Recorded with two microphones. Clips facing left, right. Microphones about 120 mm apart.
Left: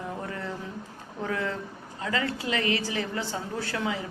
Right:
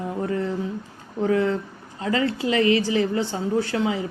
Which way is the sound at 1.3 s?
30° right (ahead or behind).